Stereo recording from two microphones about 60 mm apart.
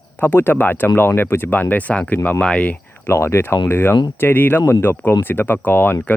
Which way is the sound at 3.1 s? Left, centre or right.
Left.